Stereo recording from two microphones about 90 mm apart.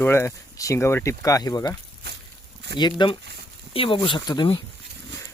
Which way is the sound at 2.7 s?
60° left (ahead or behind).